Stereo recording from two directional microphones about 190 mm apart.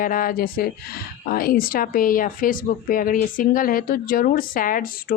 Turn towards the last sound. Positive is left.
turn(degrees=45)  # may be behind; listen again after turning